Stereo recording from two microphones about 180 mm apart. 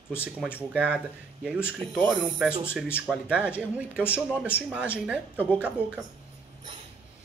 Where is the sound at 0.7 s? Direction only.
5° right (ahead or behind).